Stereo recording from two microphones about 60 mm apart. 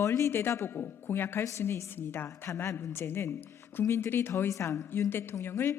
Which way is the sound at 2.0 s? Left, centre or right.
Left.